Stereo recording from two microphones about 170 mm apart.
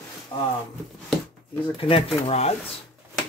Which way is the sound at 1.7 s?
30° left (ahead or behind).